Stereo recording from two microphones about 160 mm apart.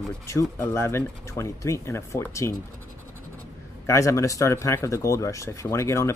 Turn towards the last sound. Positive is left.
turn(degrees=15)  # may be behind; listen again after turning